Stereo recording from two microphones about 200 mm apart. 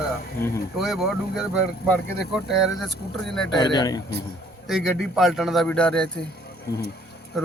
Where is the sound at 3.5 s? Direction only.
20° left (ahead or behind).